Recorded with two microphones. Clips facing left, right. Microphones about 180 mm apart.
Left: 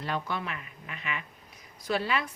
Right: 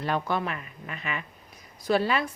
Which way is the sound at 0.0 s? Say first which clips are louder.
Right 5 dB; 50° right (ahead or behind).